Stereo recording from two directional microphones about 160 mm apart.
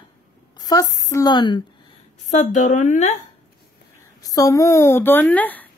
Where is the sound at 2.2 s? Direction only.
50° left (ahead or behind).